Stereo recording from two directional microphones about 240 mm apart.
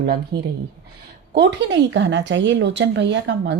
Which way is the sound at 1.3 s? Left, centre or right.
Right.